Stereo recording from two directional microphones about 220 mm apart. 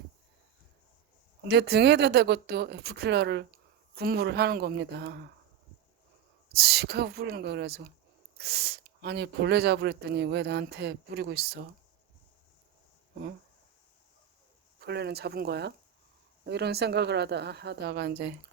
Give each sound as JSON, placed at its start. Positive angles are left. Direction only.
{"t": 1.5, "sound": "speech", "side_deg": -50}
{"t": 6.5, "sound": "speech", "side_deg": -45}
{"t": 14.8, "sound": "speech", "side_deg": -50}